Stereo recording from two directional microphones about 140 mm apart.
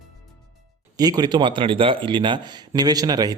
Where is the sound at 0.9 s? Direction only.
25° right (ahead or behind).